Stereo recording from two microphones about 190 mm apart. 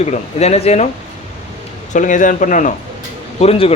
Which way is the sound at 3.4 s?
30° left (ahead or behind).